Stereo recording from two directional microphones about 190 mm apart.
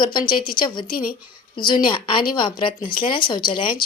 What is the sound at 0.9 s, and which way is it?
Speech, 50° left (ahead or behind).